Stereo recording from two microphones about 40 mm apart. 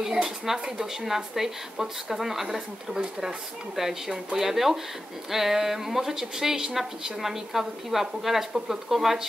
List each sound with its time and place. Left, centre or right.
0.0 s speech: centre
1.0 s a woman's voice: centre